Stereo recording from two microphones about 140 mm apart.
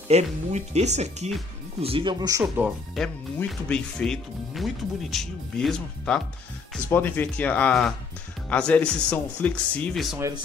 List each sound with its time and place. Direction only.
0.1 s speech: 50° right (ahead or behind)
1.8 s speech: 40° right (ahead or behind)
2.4 s speech: 5° right (ahead or behind)
3.4 s speech: 5° left (ahead or behind)